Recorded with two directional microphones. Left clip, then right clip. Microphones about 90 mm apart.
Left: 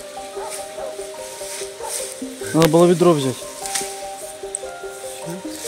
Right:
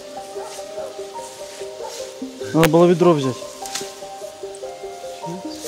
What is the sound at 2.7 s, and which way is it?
Speech, 15° left (ahead or behind).